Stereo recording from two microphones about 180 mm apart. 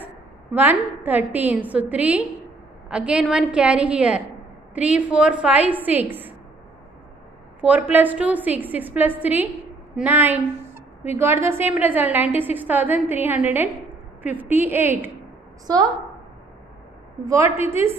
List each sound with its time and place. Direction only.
0.6 s a woman's voice: 10° right (ahead or behind)
7.6 s a woman's voice: 10° right (ahead or behind)
15.6 s a woman's voice: 20° right (ahead or behind)
17.2 s a woman's voice: 15° right (ahead or behind)